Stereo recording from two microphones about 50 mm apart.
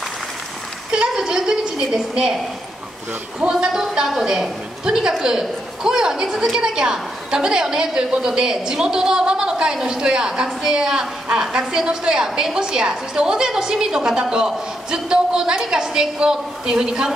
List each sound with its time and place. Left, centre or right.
0.9 s a woman's voice: centre
3.3 s a woman's voice: centre